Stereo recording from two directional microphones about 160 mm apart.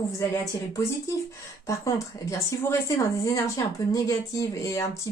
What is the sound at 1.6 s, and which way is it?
Speech, 20° left (ahead or behind).